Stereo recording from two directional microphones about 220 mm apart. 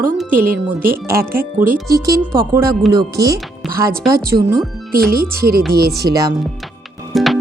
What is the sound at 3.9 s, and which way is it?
Speech, 45° right (ahead or behind).